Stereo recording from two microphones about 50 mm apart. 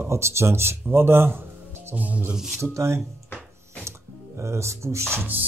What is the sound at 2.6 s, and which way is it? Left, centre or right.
Speech, right.